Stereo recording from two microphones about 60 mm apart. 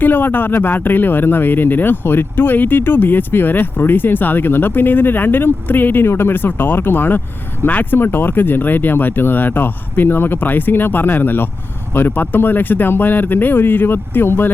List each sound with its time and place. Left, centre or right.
0.0 s speech: left